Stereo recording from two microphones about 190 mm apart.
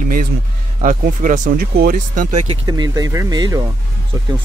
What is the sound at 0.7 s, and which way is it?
Speech, 45° right (ahead or behind).